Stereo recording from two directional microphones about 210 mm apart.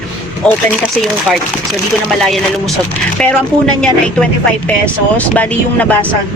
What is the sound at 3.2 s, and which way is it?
Speech, 5° left (ahead or behind).